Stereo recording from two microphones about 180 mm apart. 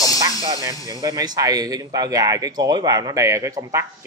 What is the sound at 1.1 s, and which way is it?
Speech, 20° right (ahead or behind).